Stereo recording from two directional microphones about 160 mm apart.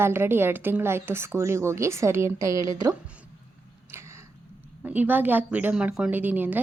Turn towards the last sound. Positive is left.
turn(degrees=-10)  # may be behind; listen again after turning